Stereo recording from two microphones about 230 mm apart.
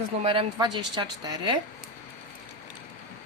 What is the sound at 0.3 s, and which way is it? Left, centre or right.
A woman's voice, right.